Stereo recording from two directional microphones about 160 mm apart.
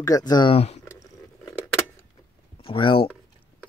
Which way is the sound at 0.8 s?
20° left (ahead or behind).